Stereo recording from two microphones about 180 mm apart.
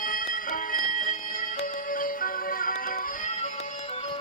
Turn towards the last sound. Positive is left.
turn(degrees=50)  # may be behind; listen again after turning